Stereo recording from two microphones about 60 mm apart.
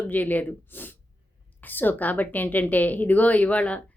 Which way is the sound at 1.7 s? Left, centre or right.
Left.